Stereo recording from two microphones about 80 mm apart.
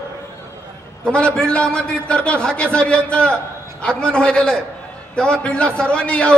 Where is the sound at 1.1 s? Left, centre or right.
Centre.